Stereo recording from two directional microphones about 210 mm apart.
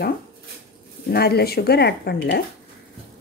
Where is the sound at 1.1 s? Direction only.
50° left (ahead or behind).